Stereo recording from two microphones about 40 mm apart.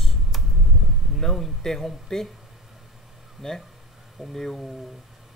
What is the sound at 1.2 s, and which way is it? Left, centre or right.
Speech, centre.